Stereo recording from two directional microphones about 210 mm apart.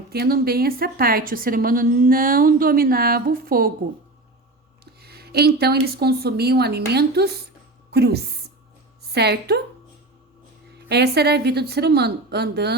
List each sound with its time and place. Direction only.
0.1 s a woman's voice: 45° right (ahead or behind)
4.9 s a woman's voice: 50° right (ahead or behind)
10.8 s a woman's voice: 50° right (ahead or behind)